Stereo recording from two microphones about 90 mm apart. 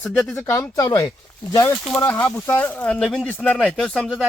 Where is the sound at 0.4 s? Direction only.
35° left (ahead or behind).